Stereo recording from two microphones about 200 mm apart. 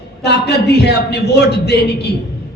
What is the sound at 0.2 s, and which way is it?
A man's voice, 55° left (ahead or behind).